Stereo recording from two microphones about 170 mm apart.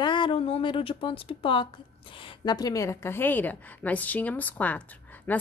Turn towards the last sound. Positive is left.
turn(degrees=10)  # may be behind; listen again after turning